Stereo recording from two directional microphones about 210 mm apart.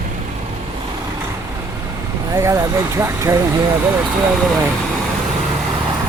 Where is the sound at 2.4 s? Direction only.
15° right (ahead or behind).